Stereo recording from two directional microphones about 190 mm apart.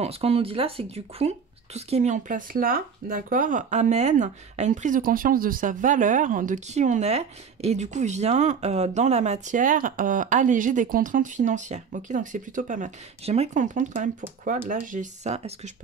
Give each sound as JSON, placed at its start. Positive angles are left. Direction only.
{"t": 0.0, "sound": "speech", "side_deg": -30}